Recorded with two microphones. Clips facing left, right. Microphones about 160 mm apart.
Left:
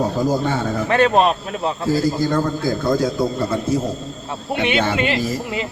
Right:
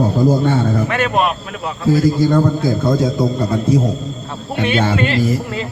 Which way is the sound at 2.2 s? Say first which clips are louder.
Right 5 dB; 20° right (ahead or behind).